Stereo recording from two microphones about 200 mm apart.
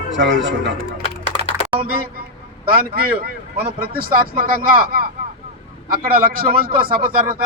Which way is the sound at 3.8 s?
45° right (ahead or behind).